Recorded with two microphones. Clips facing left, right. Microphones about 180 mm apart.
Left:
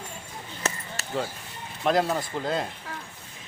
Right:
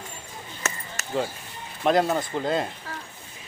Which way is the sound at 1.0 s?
35° left (ahead or behind).